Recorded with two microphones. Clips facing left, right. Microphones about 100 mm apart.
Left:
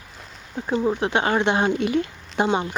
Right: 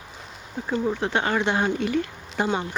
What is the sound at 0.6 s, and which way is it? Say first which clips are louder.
Speech: left 3 dB; 20° left (ahead or behind).